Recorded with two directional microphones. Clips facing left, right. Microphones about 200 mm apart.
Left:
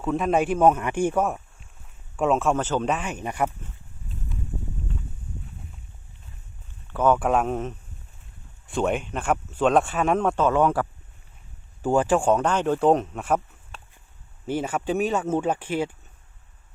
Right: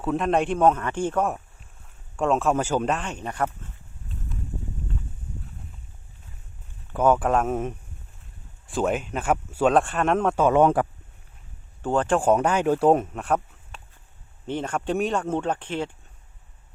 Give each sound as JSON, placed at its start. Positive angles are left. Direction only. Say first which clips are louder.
{"t": 0.0, "sound": "speech", "louder": "even", "side_deg": 0}
{"t": 2.6, "sound": "speech", "louder": "right 1 dB", "side_deg": -10}
{"t": 2.9, "sound": "speech", "louder": "left 1 dB", "side_deg": 5}
{"t": 6.9, "sound": "speech", "louder": "even", "side_deg": -10}
{"t": 10.3, "sound": "speech", "louder": "right 2 dB", "side_deg": -15}
{"t": 11.8, "sound": "speech", "louder": "left 2 dB", "side_deg": 10}
{"t": 12.3, "sound": "speech", "louder": "right 1 dB", "side_deg": -10}
{"t": 14.4, "sound": "speech", "louder": "left 1 dB", "side_deg": 5}